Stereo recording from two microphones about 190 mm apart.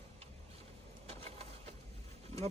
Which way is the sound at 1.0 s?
30° right (ahead or behind).